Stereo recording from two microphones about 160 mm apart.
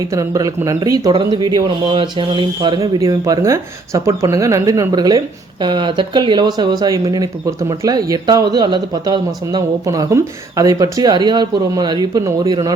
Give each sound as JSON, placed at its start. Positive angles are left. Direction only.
{"t": 0.1, "sound": "speech", "side_deg": -20}